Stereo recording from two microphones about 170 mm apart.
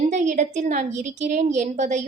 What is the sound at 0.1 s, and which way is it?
A woman's voice, 45° right (ahead or behind).